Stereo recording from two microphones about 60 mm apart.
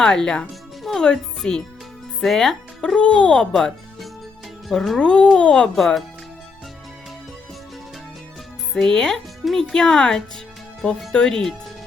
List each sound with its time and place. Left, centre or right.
0.0 s speech: centre
3.5 s music: centre
4.7 s speech: centre
4.9 s speech: centre
5.7 s speech: centre
8.7 s speech: centre